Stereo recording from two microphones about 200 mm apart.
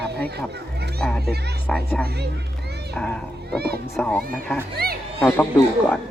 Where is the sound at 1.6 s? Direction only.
5° left (ahead or behind).